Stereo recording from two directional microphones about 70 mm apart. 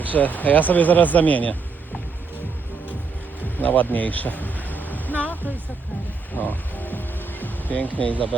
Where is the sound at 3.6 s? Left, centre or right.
Left.